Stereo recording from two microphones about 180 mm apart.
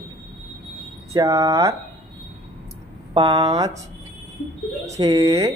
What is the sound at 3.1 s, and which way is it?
Speech, 25° right (ahead or behind).